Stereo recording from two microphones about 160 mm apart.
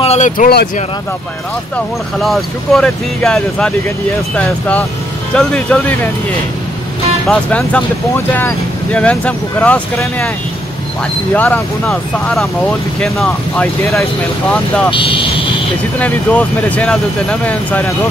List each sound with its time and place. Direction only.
0.0 s speech: 45° left (ahead or behind)
2.1 s speech: centre (ahead or behind)
5.3 s speech: 5° left (ahead or behind)
7.2 s speech: 5° left (ahead or behind)
11.3 s speech: 10° left (ahead or behind)
14.9 s speech: 35° left (ahead or behind)
16.0 s speech: 10° left (ahead or behind)